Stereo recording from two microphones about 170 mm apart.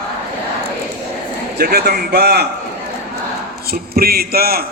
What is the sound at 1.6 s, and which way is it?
Speech, 65° right (ahead or behind).